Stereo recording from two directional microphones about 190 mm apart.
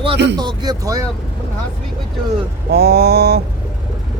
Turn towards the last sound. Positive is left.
turn(degrees=-55)  # may be behind; listen again after turning